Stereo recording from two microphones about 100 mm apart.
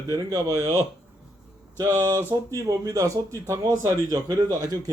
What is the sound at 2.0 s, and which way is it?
Speech, 30° right (ahead or behind).